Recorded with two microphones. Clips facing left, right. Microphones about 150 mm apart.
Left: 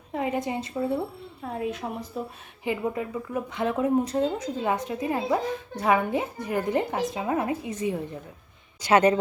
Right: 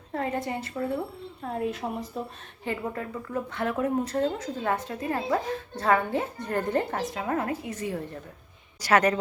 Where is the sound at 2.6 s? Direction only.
15° left (ahead or behind).